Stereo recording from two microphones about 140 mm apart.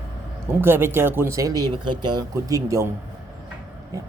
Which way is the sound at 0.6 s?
15° right (ahead or behind).